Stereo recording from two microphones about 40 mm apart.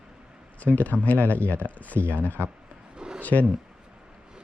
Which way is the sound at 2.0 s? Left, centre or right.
Right.